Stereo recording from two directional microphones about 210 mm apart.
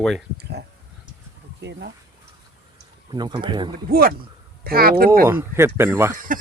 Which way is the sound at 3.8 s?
45° right (ahead or behind).